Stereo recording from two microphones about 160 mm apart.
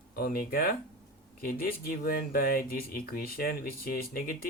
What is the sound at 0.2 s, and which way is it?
Speech, 65° left (ahead or behind).